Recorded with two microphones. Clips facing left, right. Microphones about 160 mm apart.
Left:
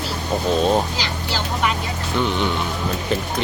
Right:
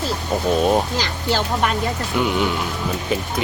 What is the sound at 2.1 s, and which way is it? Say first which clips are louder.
Speech: right 1 dB; 10° right (ahead or behind).